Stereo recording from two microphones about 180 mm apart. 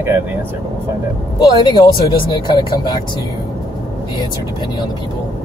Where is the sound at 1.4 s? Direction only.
20° left (ahead or behind).